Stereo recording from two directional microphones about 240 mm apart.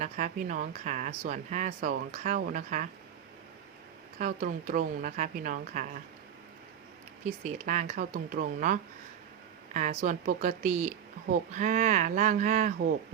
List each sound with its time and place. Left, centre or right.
0.0 s speech: right
4.2 s speech: right
7.4 s speech: right